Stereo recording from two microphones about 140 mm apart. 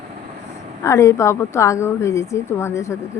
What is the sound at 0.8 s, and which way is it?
A woman's voice, 20° left (ahead or behind).